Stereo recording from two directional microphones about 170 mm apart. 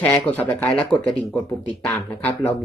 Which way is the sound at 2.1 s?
10° left (ahead or behind).